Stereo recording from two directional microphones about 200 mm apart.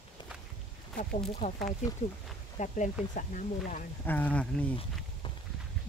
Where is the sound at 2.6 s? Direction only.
40° left (ahead or behind).